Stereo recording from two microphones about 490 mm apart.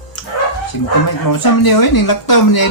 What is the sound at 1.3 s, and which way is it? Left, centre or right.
Speech, left.